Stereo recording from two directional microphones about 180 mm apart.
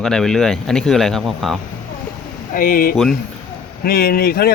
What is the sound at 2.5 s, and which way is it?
Speech, 50° left (ahead or behind).